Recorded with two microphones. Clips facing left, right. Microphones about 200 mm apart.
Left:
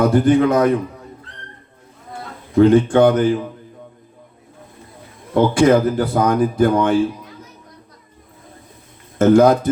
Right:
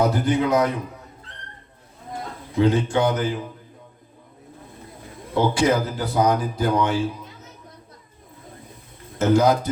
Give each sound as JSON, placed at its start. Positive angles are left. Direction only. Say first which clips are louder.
{"t": 0.0, "sound": "speech", "louder": "left 7 dB", "side_deg": 55}
{"t": 2.6, "sound": "speech", "louder": "left 8 dB", "side_deg": 50}
{"t": 5.3, "sound": "speech", "louder": "left 7 dB", "side_deg": 50}
{"t": 9.1, "sound": "speech", "louder": "left 6 dB", "side_deg": 50}